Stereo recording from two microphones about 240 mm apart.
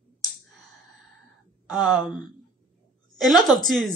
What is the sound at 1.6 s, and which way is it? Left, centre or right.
Speech, centre.